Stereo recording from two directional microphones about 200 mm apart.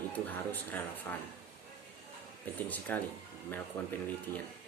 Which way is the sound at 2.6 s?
10° left (ahead or behind).